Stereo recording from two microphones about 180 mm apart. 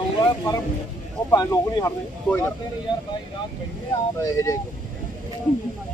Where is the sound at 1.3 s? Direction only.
20° left (ahead or behind).